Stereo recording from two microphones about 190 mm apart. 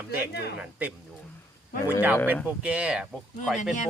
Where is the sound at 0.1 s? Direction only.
60° left (ahead or behind).